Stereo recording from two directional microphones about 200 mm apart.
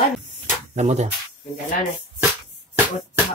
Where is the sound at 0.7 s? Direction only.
35° right (ahead or behind).